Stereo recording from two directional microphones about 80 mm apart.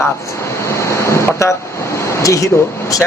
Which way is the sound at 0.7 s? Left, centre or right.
Left.